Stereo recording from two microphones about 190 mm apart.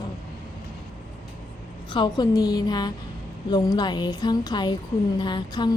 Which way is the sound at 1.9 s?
25° left (ahead or behind).